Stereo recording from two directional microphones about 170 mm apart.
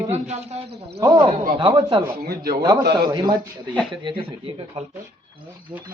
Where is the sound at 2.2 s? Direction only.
65° right (ahead or behind).